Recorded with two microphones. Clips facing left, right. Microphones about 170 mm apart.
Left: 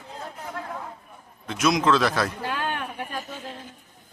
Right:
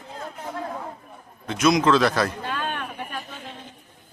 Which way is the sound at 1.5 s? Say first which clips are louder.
Right 3 dB; centre (ahead or behind).